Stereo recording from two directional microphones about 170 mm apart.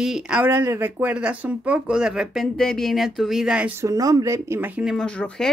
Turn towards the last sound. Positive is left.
turn(degrees=5)  # may be behind; listen again after turning